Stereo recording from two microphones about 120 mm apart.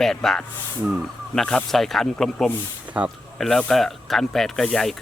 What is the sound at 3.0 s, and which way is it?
Speech, 10° right (ahead or behind).